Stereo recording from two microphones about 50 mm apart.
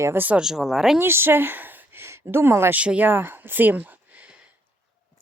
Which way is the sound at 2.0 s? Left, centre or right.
Right.